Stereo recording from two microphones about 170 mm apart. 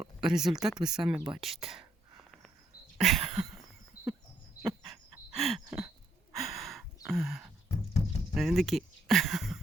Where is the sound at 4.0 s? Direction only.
60° left (ahead or behind).